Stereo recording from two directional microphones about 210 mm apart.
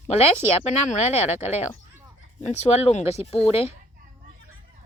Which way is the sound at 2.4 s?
30° left (ahead or behind).